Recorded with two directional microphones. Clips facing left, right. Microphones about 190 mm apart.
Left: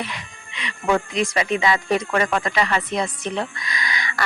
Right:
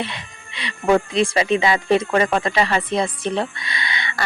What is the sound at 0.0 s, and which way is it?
Speech, 30° right (ahead or behind).